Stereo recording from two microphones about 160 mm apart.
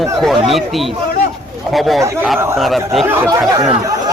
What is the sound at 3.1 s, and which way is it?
Speech, 20° right (ahead or behind).